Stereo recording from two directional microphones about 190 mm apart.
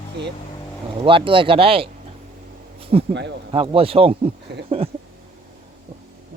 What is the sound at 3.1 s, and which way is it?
Speech, 65° right (ahead or behind).